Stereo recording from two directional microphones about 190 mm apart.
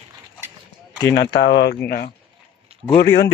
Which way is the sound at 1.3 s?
65° left (ahead or behind).